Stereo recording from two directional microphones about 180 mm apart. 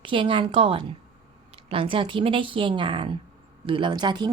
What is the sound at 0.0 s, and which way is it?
Speech, 30° right (ahead or behind).